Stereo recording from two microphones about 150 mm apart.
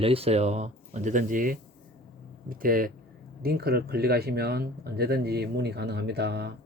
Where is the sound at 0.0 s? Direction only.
40° right (ahead or behind); by 2.9 s 70° right (ahead or behind).